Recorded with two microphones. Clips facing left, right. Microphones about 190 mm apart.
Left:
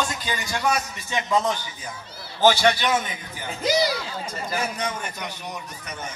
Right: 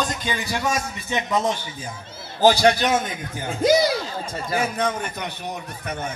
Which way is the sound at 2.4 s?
40° right (ahead or behind).